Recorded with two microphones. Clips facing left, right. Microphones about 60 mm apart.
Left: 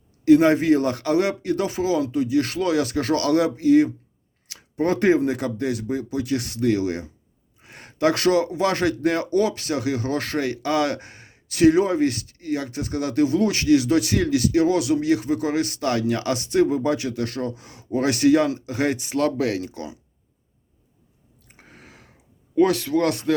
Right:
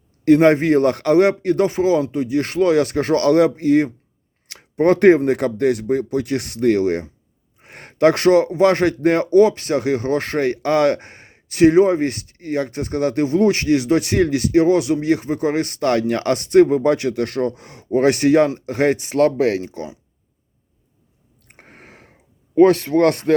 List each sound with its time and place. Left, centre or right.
0.3 s speech: right
21.4 s a sound: right
22.5 s speech: right